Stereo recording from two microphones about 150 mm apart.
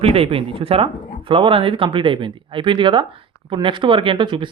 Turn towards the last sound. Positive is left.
turn(degrees=-30)  # may be behind; listen again after turning